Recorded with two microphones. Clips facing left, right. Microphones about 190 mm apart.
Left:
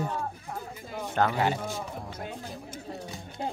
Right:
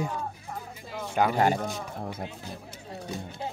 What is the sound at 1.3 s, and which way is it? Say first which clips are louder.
Speech: right 3 dB; 45° right (ahead or behind).